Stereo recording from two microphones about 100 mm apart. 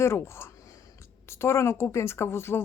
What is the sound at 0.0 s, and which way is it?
Speech, 25° left (ahead or behind).